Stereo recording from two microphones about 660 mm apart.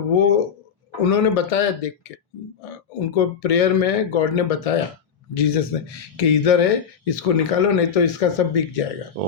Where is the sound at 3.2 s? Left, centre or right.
Left.